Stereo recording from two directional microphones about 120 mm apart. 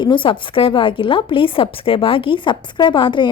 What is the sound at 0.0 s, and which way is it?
A woman's voice, 45° left (ahead or behind).